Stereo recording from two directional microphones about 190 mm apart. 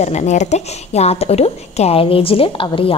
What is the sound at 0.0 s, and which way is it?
A woman's voice, 35° left (ahead or behind).